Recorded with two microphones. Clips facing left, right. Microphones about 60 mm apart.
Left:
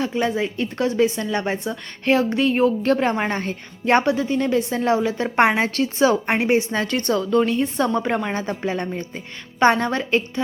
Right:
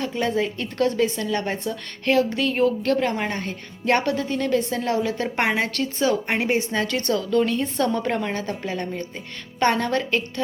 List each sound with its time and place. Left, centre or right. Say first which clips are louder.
0.0 s a woman's voice: left 2 dB; centre